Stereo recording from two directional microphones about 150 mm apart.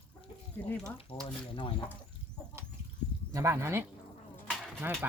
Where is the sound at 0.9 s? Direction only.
35° left (ahead or behind).